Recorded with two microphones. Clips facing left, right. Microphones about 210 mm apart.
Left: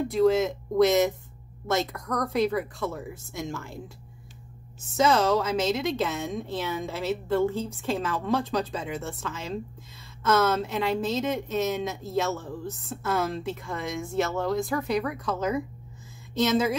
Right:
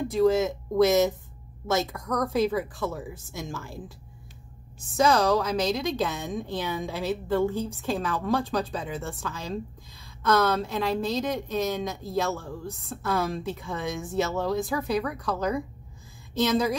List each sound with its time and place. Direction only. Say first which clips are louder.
0.1 s a woman's voice: even; centre (ahead or behind)
4.8 s a woman's voice: even; centre (ahead or behind)